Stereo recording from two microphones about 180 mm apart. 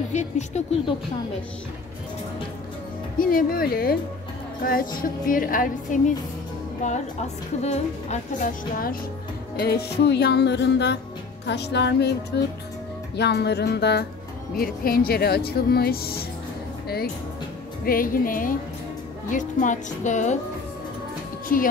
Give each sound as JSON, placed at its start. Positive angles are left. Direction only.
{"t": 0.1, "sound": "speech", "side_deg": 40}
{"t": 3.2, "sound": "a woman's voice", "side_deg": 55}
{"t": 9.6, "sound": "music", "side_deg": 60}
{"t": 14.5, "sound": "speech", "side_deg": 55}
{"t": 17.8, "sound": "a woman's voice", "side_deg": 50}